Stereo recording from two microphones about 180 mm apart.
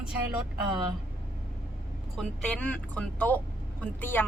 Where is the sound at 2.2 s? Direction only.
5° left (ahead or behind).